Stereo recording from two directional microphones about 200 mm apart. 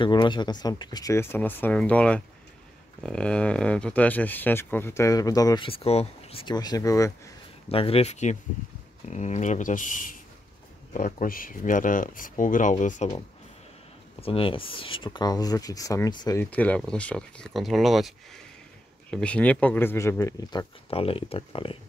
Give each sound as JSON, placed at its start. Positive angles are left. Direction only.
{"t": 0.0, "sound": "speech", "side_deg": 25}
{"t": 7.7, "sound": "speech", "side_deg": 30}
{"t": 14.2, "sound": "speech", "side_deg": 25}
{"t": 16.4, "sound": "speech", "side_deg": 5}